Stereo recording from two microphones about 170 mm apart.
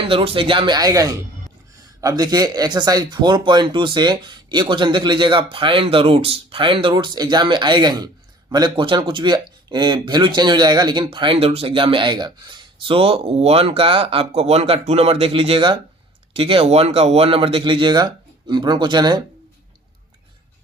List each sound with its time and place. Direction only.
0.0 s speech: 30° right (ahead or behind)